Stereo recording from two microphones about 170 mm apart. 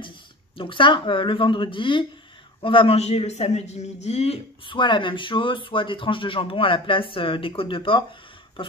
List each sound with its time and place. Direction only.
0.6 s a man's voice: 30° left (ahead or behind)